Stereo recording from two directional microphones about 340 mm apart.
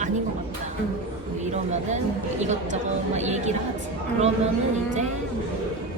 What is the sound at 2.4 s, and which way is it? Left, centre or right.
A woman's voice, centre.